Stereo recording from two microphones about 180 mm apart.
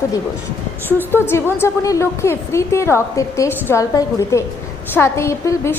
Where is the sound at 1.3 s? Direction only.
15° left (ahead or behind).